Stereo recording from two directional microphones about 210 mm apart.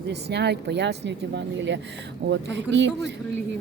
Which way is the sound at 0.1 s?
55° right (ahead or behind).